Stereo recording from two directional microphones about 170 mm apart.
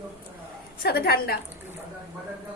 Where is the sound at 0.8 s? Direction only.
65° left (ahead or behind).